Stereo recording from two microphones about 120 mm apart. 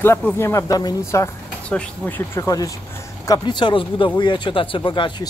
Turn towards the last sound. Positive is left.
turn(degrees=40)  # may be behind; listen again after turning